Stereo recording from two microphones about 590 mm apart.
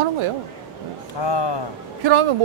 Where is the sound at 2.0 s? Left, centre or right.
Right.